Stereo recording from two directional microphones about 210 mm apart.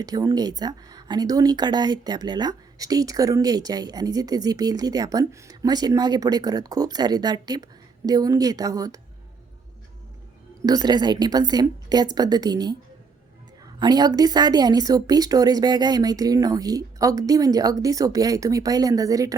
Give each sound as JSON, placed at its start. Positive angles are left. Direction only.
{"t": 0.0, "sound": "speech", "side_deg": -15}
{"t": 10.6, "sound": "a woman's voice", "side_deg": -15}
{"t": 13.7, "sound": "speech", "side_deg": -20}